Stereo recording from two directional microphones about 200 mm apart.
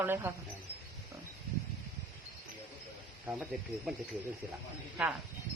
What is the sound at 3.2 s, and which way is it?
Speech, 5° right (ahead or behind).